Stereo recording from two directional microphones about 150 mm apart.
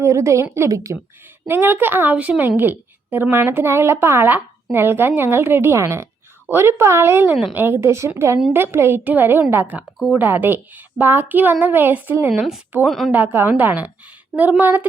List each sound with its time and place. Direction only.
0.0 s a woman's voice: 20° right (ahead or behind)
12.3 s speech: centre (ahead or behind)
13.1 s a woman's voice: 15° right (ahead or behind)